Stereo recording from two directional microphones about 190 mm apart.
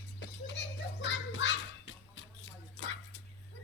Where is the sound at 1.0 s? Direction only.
70° left (ahead or behind).